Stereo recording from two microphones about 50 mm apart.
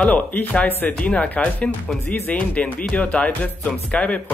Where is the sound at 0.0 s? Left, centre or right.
Left.